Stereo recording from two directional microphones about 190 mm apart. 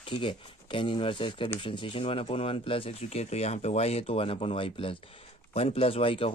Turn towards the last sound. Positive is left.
turn(degrees=30)  # may be behind; listen again after turning